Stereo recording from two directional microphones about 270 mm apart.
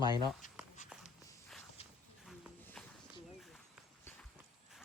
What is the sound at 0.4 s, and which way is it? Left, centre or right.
Speech, left.